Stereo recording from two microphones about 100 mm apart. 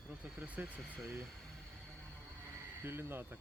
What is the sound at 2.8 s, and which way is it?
Speech, 25° right (ahead or behind).